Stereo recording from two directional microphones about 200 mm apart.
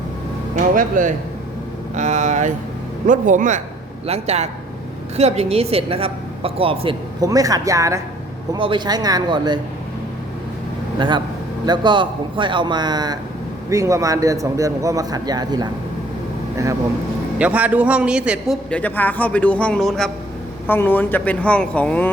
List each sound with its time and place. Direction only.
0.8 s a woman's voice: 40° right (ahead or behind); by 9.6 s 20° right (ahead or behind)
11.6 s a woman's voice: 20° right (ahead or behind)
17.3 s a man's voice: 5° right (ahead or behind)
18.7 s speech: 10° left (ahead or behind)